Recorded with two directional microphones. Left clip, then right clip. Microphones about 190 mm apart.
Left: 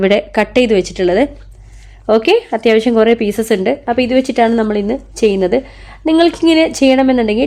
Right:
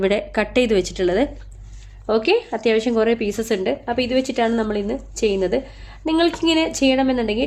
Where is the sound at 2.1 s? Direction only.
45° left (ahead or behind).